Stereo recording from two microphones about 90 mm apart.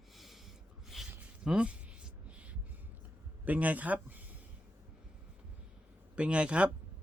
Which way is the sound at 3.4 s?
15° right (ahead or behind).